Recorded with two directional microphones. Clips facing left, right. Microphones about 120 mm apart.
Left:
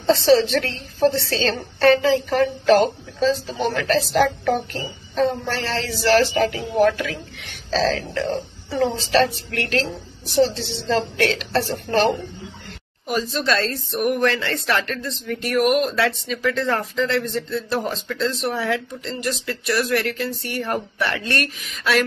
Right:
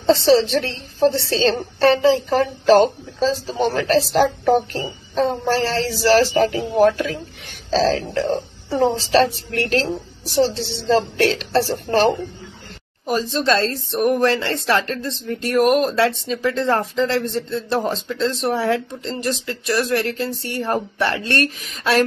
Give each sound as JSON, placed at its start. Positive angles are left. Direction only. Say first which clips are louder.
{"t": 0.0, "sound": "speech", "louder": "right 1 dB", "side_deg": -30}